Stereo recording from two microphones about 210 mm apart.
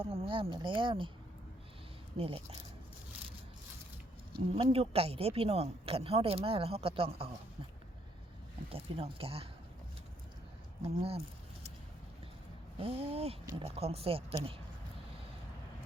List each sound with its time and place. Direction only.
0.0 s speech: 25° right (ahead or behind)
2.1 s speech: 25° right (ahead or behind)
4.5 s speech: 25° right (ahead or behind)
8.7 s speech: 25° right (ahead or behind)
10.8 s speech: 25° right (ahead or behind)
12.8 s speech: 25° right (ahead or behind)